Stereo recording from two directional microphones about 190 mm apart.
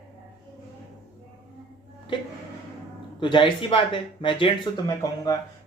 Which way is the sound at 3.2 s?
25° left (ahead or behind).